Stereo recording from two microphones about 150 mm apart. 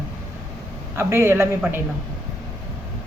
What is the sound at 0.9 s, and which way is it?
Speech, 15° right (ahead or behind).